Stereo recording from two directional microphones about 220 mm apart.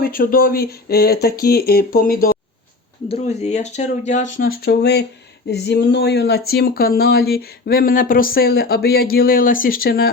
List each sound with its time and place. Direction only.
0.0 s speech: 40° left (ahead or behind)
3.1 s speech: 30° left (ahead or behind)